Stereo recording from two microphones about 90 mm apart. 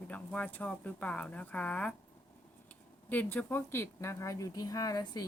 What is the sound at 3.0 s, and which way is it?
Speech, 20° left (ahead or behind).